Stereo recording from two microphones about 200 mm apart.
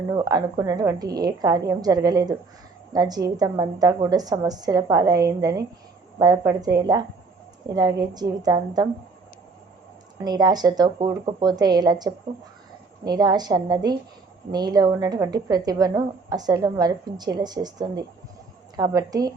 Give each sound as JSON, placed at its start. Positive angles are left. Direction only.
{"t": 0.1, "sound": "a woman's voice", "side_deg": -20}
{"t": 10.2, "sound": "a woman's voice", "side_deg": -20}